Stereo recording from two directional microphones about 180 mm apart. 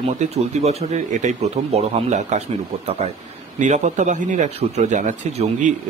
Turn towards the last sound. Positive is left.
turn(degrees=-45)  # may be behind; listen again after turning